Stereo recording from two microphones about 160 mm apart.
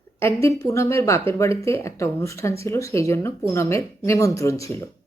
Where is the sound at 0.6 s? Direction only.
20° left (ahead or behind).